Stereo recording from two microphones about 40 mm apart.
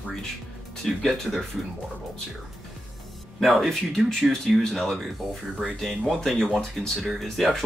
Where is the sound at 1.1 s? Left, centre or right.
Centre.